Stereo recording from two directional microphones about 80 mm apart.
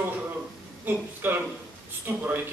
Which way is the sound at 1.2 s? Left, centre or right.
Right.